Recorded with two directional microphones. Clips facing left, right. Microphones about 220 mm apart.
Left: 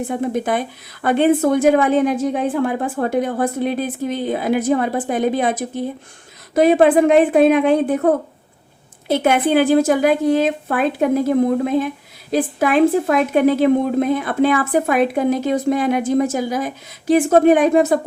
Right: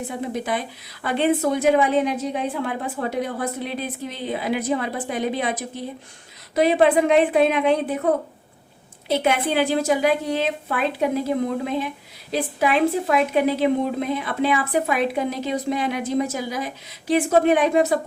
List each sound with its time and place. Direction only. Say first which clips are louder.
0.1 s a woman's voice: left 6 dB; 50° left (ahead or behind)
9.0 s a woman's voice: left 5 dB; 50° left (ahead or behind)